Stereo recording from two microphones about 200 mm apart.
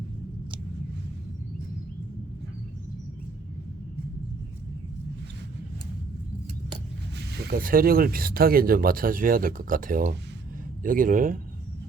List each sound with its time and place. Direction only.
7.2 s speech: 55° right (ahead or behind)